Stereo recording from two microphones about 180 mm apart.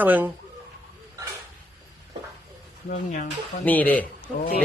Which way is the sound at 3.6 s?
10° left (ahead or behind).